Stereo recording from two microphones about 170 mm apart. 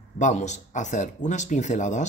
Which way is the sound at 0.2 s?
45° left (ahead or behind).